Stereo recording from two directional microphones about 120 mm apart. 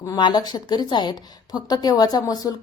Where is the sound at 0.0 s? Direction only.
35° left (ahead or behind).